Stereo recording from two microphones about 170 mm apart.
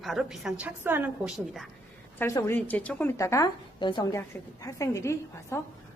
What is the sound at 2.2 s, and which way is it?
A woman's voice, 15° left (ahead or behind).